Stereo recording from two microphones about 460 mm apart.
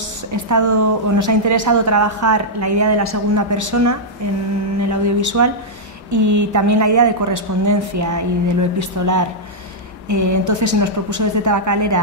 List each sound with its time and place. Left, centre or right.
0.3 s a woman's voice: right